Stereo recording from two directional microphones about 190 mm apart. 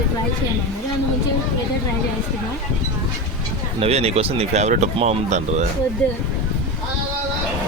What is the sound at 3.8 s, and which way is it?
Speech, 35° right (ahead or behind).